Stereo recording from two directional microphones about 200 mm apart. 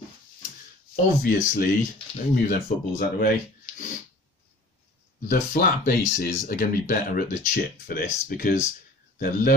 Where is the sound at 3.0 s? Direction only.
45° left (ahead or behind).